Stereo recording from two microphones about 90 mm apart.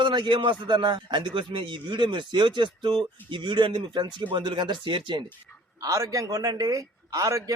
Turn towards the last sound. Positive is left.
turn(degrees=-40)  # may be behind; listen again after turning